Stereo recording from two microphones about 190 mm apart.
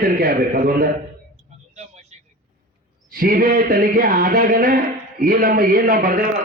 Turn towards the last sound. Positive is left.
turn(degrees=-50)  # may be behind; listen again after turning